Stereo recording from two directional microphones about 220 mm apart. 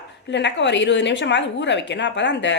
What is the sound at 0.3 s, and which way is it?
A woman's voice, 55° left (ahead or behind).